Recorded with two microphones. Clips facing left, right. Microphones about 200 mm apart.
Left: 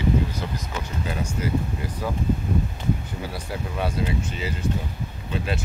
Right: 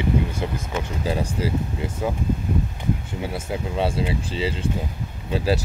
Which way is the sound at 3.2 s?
25° right (ahead or behind).